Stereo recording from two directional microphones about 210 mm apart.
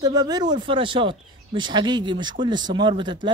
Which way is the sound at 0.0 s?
15° right (ahead or behind).